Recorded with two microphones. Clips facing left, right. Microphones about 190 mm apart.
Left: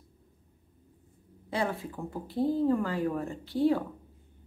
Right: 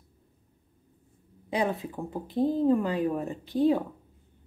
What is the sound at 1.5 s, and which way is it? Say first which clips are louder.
Speech: right 3 dB; 20° right (ahead or behind).